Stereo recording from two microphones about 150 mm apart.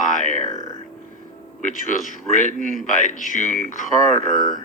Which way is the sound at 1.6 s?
60° left (ahead or behind).